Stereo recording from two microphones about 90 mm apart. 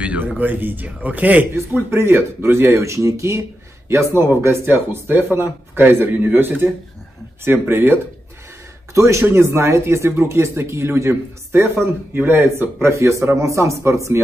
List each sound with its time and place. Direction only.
0.0 s a man's voice: 15° right (ahead or behind); by 14.2 s 35° right (ahead or behind)